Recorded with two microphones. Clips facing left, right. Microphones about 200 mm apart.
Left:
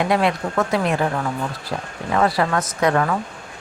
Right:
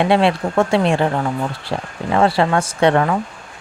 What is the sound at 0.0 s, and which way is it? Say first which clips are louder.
Speech: right 4 dB; 30° right (ahead or behind).